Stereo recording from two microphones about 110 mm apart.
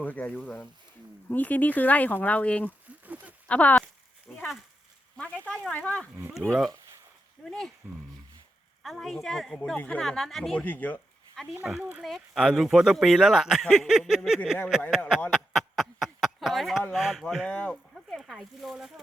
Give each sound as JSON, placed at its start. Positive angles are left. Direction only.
{"t": 0.0, "sound": "speech", "side_deg": 15}
{"t": 4.4, "sound": "dog", "side_deg": 0}
{"t": 5.1, "sound": "speech", "side_deg": 15}
{"t": 7.4, "sound": "speech", "side_deg": 5}
{"t": 8.8, "sound": "speech", "side_deg": 0}
{"t": 10.6, "sound": "speech", "side_deg": 15}
{"t": 11.6, "sound": "speech", "side_deg": -10}
{"t": 15.4, "sound": "a sound", "side_deg": 0}
{"t": 16.9, "sound": "speech", "side_deg": 0}